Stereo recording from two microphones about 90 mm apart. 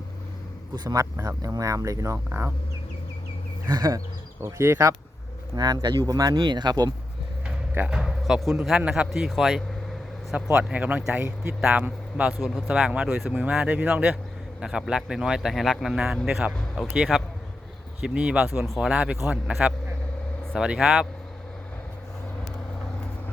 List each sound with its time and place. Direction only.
1.5 s speech: 35° right (ahead or behind)
3.7 s speech: 45° right (ahead or behind)
4.4 s speech: 35° right (ahead or behind)
5.5 s speech: 45° right (ahead or behind)
6.3 s speech: 55° right (ahead or behind)
7.4 s a sound: 15° right (ahead or behind)
7.9 s speech: 5° right (ahead or behind)
10.3 s speech: 10° right (ahead or behind)
13.3 s speech: 15° right (ahead or behind)
14.6 s speech: 5° right (ahead or behind)
16.6 s speech: 5° left (ahead or behind)
16.9 s speech: 10° right (ahead or behind)
18.6 s speech: centre (ahead or behind)
18.9 s speech: 15° right (ahead or behind)